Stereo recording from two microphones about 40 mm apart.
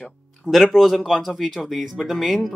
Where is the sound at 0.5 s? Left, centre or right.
Centre.